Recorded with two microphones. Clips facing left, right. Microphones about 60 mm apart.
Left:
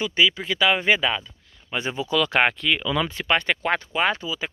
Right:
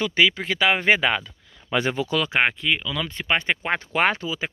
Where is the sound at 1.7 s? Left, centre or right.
Right.